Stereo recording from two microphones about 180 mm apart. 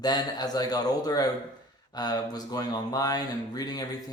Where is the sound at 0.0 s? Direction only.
20° left (ahead or behind).